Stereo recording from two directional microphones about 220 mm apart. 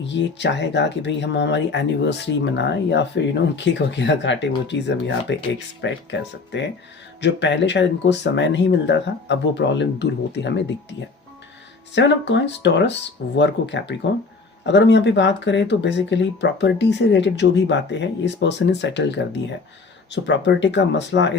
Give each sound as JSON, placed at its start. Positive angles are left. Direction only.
{"t": 0.0, "sound": "speech", "side_deg": 50}
{"t": 11.9, "sound": "speech", "side_deg": 55}